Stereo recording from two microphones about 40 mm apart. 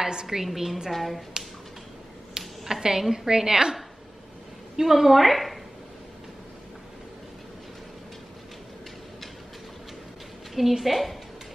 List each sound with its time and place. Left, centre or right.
0.0 s a woman's voice: centre
0.4 s a woman's voice: centre
2.3 s speech: centre
4.7 s a woman's voice: centre
10.5 s a woman's voice: centre